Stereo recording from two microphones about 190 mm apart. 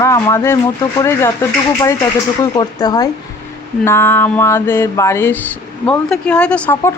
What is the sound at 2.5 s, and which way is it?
Speech, 20° left (ahead or behind).